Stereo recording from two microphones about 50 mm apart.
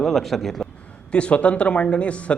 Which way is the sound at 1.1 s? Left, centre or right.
Left.